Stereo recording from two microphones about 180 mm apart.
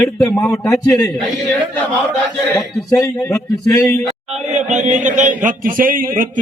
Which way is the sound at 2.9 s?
20° left (ahead or behind).